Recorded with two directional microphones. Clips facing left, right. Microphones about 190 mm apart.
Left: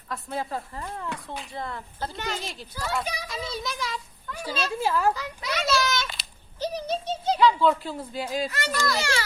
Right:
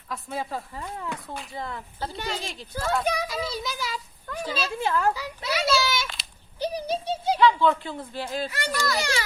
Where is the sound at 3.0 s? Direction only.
50° right (ahead or behind).